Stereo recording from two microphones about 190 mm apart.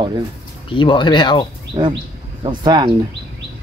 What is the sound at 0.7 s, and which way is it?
Speech, 25° left (ahead or behind).